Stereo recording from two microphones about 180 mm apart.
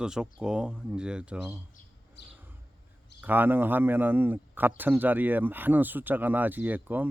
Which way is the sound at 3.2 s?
10° right (ahead or behind).